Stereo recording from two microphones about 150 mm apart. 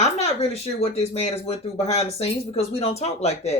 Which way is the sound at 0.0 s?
45° left (ahead or behind).